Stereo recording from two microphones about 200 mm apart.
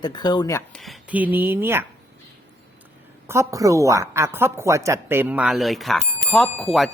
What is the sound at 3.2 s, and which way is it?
A woman's voice, 15° right (ahead or behind).